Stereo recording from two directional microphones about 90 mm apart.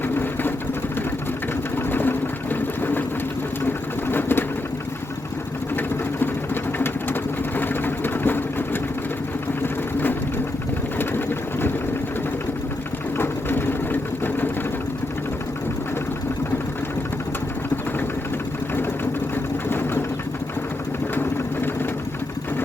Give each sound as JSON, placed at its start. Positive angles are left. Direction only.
{"t": 0.1, "sound": "vehicle", "side_deg": 25}
{"t": 1.7, "sound": "sewing machine", "side_deg": 20}
{"t": 5.7, "sound": "sewing machine", "side_deg": 20}
{"t": 10.9, "sound": "vehicle", "side_deg": 25}
{"t": 13.1, "sound": "vehicle", "side_deg": 25}
{"t": 19.7, "sound": "sewing machine", "side_deg": 25}